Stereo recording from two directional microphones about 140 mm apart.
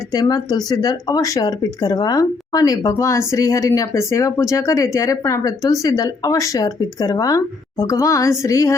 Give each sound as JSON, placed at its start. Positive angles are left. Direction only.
{"t": 0.1, "sound": "speech", "side_deg": 30}